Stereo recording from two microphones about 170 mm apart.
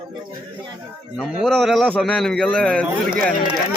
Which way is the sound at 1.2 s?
Centre (ahead or behind).